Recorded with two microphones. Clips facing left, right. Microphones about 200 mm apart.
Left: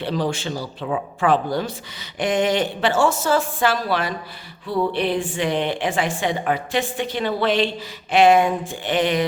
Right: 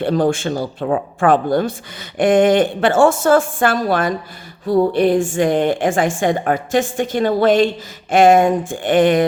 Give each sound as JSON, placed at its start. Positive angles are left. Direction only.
{"t": 0.0, "sound": "speech", "side_deg": -50}